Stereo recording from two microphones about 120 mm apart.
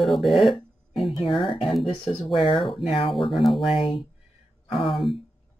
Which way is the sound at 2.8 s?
50° left (ahead or behind).